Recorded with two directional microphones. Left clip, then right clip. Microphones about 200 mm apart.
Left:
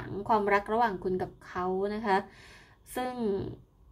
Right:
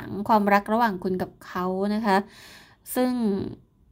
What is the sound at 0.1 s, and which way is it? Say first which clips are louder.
A woman's voice: right 6 dB; 40° right (ahead or behind).